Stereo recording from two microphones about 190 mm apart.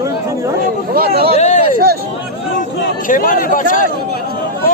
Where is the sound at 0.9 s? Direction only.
55° right (ahead or behind).